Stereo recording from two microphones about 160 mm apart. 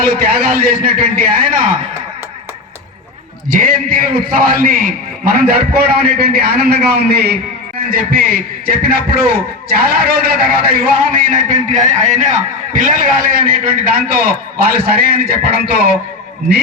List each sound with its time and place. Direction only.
0.0 s a man's voice: 70° right (ahead or behind)
3.5 s a man's voice: 60° right (ahead or behind); by 7.3 s 85° right
7.9 s a man's voice: 65° right (ahead or behind)